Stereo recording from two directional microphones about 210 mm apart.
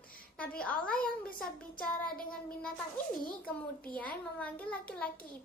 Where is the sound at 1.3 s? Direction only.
40° left (ahead or behind).